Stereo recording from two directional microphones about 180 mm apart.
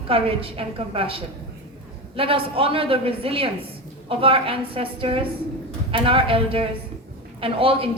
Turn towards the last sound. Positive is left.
turn(degrees=-30)  # may be behind; listen again after turning